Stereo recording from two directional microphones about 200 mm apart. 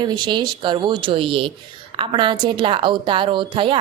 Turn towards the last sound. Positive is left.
turn(degrees=-25)  # may be behind; listen again after turning